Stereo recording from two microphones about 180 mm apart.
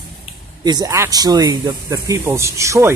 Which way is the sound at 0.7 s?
20° right (ahead or behind).